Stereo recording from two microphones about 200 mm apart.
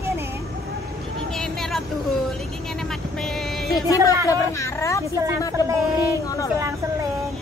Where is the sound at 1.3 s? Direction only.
Centre (ahead or behind).